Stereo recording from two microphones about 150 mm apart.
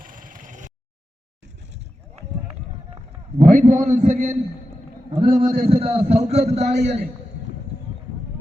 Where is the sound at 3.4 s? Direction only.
60° right (ahead or behind).